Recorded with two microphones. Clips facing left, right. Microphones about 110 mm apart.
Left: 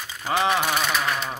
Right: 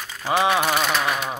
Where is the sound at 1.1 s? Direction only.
15° right (ahead or behind).